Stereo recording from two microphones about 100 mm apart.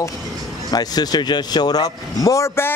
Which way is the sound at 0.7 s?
40° left (ahead or behind).